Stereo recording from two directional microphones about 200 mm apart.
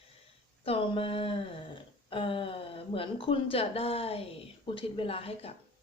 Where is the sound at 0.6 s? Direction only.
25° left (ahead or behind).